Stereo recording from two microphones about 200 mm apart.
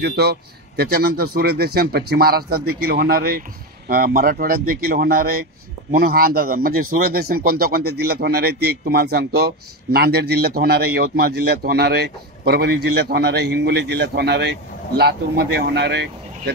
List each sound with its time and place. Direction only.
0.0 s speech: 55° right (ahead or behind)